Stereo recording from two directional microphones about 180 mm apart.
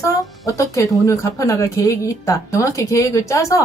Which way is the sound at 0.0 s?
15° left (ahead or behind).